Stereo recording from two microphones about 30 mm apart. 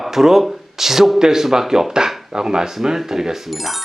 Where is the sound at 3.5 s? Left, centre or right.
Centre.